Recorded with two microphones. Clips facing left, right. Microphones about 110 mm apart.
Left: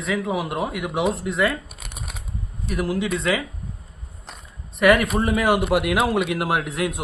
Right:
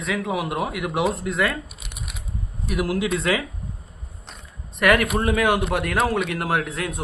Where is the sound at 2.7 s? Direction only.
5° right (ahead or behind).